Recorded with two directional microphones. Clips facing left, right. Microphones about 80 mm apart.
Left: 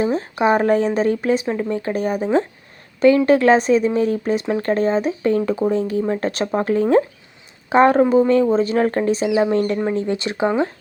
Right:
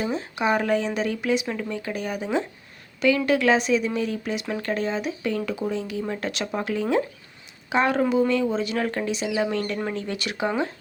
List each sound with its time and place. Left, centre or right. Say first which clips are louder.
0.0 s speech: left 7 dB; left